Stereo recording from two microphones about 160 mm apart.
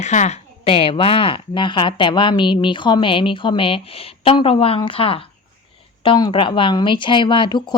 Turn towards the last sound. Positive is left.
turn(degrees=25)  # may be behind; listen again after turning